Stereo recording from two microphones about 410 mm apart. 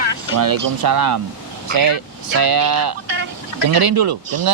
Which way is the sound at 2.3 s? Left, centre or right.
Right.